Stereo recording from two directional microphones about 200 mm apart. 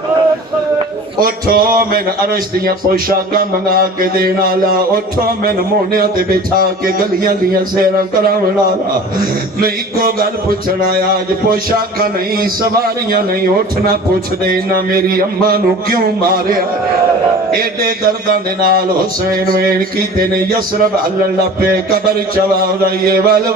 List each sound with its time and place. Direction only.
1.2 s music: 45° right (ahead or behind)
5.9 s music: 45° right (ahead or behind)
9.6 s music: 45° right (ahead or behind)
13.1 s music: 50° right (ahead or behind)
17.6 s music: 45° right (ahead or behind)
21.5 s music: 45° right (ahead or behind)